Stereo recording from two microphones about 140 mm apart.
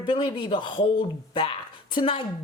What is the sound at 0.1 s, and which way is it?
A woman's voice, 35° left (ahead or behind).